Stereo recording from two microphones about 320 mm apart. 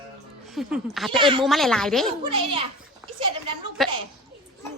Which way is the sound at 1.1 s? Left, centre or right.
Centre.